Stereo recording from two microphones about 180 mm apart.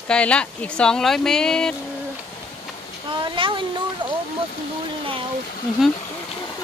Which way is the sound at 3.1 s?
25° right (ahead or behind).